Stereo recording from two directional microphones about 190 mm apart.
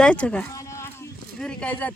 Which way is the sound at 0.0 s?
5° left (ahead or behind).